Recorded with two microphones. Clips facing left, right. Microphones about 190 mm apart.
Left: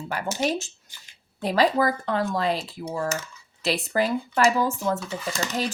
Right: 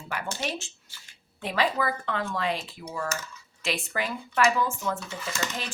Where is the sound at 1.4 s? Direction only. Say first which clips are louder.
Left 6 dB; 40° left (ahead or behind).